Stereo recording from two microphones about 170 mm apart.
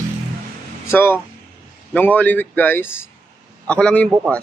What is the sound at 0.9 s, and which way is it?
Speech, 15° left (ahead or behind).